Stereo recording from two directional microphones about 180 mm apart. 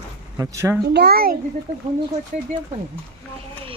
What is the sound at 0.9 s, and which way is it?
Speech, 60° right (ahead or behind).